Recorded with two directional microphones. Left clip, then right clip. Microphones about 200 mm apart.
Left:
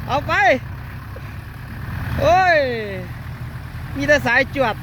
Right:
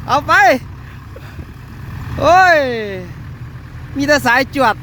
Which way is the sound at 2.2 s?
35° right (ahead or behind).